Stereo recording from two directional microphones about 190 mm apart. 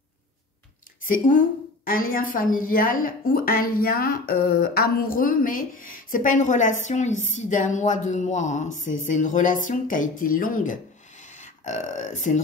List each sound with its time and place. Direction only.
1.0 s a woman's voice: 45° left (ahead or behind)